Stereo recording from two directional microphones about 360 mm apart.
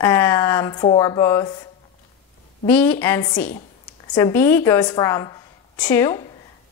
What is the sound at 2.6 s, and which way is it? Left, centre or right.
A woman's voice, centre.